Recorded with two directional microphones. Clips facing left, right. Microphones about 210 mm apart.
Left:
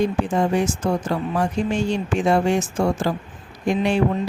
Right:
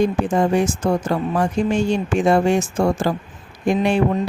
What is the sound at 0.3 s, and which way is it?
Speech, 45° right (ahead or behind).